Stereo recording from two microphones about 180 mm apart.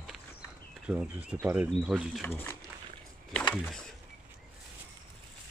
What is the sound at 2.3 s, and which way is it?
Speech, 15° left (ahead or behind).